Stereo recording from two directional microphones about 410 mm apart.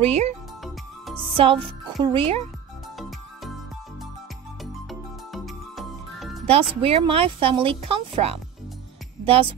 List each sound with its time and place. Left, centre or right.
0.0 s speech: centre
1.1 s music: centre
2.0 s speech: centre
4.8 s music: centre
6.7 s a woman's voice: centre